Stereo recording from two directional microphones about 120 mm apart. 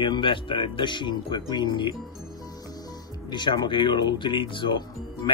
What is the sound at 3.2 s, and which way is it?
Speech, 40° left (ahead or behind).